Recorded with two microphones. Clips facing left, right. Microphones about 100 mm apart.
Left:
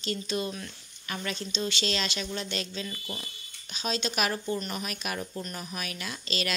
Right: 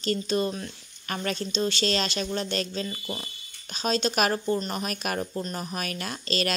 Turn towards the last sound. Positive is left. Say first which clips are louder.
# right 5 dB
turn(degrees=-45)  # may be behind; listen again after turning